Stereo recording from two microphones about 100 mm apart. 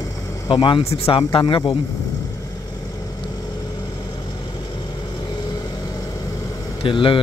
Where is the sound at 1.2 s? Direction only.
55° left (ahead or behind).